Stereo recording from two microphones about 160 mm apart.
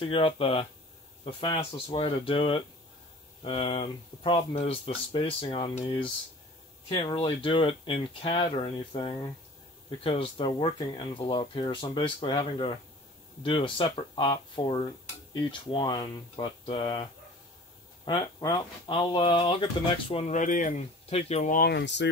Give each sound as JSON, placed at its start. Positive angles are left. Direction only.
{"t": 0.0, "sound": "speech", "side_deg": 35}
{"t": 1.9, "sound": "speech", "side_deg": 35}
{"t": 18.0, "sound": "speech", "side_deg": 30}
{"t": 21.1, "sound": "speech", "side_deg": 40}
{"t": 21.5, "sound": "speech", "side_deg": 85}